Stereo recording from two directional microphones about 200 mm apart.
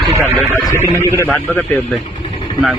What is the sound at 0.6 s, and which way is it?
Speech, 15° left (ahead or behind).